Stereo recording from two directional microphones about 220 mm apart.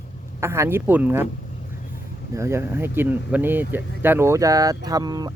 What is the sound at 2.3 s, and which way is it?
Speech, 15° right (ahead or behind).